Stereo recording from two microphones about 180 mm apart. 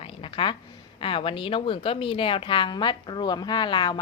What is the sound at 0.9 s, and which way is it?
A woman's voice, 30° left (ahead or behind).